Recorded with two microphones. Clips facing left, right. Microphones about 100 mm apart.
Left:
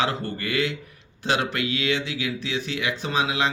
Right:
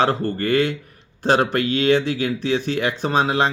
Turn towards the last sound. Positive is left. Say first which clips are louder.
# right 6 dB
turn(degrees=-40)  # may be behind; listen again after turning